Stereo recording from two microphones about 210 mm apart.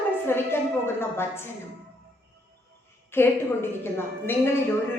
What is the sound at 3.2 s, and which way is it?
A woman's voice, 10° left (ahead or behind).